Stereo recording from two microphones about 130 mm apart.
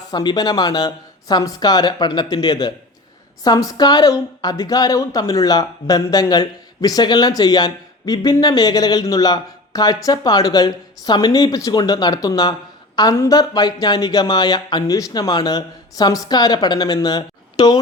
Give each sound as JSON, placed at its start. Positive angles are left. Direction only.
{"t": 0.1, "sound": "speech", "side_deg": 30}